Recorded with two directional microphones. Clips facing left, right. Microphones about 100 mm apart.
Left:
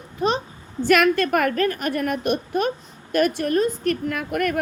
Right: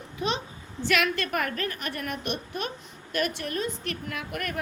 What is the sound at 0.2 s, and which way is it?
A child's voice, 40° left (ahead or behind).